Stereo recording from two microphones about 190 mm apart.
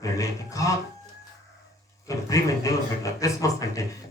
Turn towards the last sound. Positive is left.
turn(degrees=15)  # may be behind; listen again after turning